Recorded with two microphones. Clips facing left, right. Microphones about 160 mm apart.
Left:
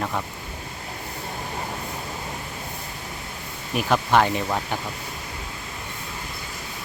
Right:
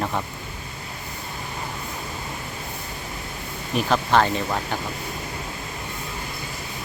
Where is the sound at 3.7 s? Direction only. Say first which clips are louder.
Even; 10° left (ahead or behind).